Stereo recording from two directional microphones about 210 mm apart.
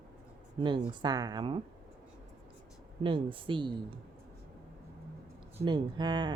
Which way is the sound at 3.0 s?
25° right (ahead or behind).